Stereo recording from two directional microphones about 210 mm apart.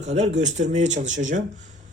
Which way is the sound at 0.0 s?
35° right (ahead or behind).